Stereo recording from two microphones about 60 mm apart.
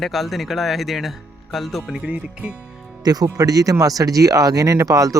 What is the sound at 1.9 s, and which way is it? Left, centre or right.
Speech, centre.